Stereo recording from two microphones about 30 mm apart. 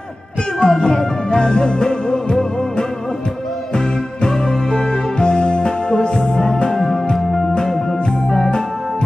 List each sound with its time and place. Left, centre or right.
0.6 s music: left
4.3 s music: left
8.3 s organ: left